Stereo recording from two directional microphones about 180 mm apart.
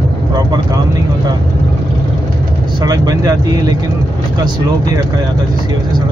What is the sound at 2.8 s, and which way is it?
Speech, 20° right (ahead or behind).